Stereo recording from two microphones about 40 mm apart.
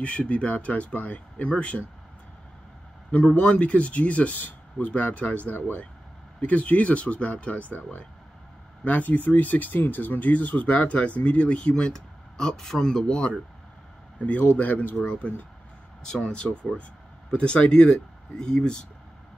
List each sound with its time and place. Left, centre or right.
0.0 s speech: left
3.1 s speech: left
8.8 s speech: left
14.6 s speech: left
15.0 s speech: left
16.0 s speech: centre